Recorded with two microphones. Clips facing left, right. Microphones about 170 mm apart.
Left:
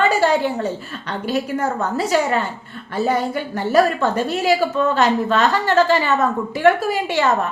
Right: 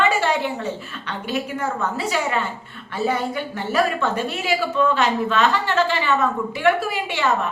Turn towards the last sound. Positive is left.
turn(degrees=40)  # may be behind; listen again after turning